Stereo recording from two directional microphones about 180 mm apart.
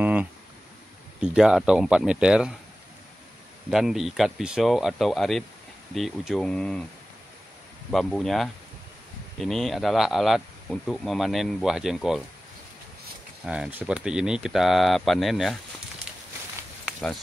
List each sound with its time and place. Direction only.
0.0 s a sound: 10° right (ahead or behind)
1.2 s speech: 5° right (ahead or behind)
3.7 s speech: centre (ahead or behind)
7.9 s speech: 5° left (ahead or behind)
13.5 s speech: 10° right (ahead or behind)
16.8 s a sound: centre (ahead or behind)